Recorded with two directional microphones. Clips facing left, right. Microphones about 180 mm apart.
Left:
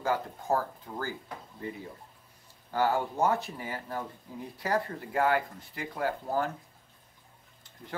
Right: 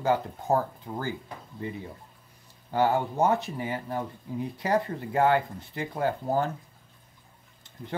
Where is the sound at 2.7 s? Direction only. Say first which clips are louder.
Right 3 dB; 20° right (ahead or behind).